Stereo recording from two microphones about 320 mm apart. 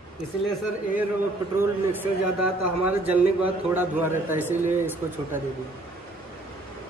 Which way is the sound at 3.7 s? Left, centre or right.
Centre.